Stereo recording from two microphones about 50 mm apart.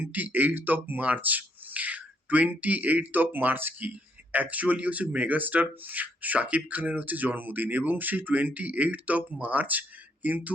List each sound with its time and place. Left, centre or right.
0.0 s speech: right
3.8 s speech: right